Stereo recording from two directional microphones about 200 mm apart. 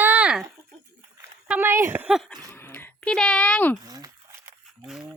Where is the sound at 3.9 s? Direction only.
15° right (ahead or behind).